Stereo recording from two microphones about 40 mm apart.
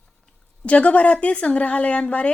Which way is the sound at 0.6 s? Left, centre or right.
Left.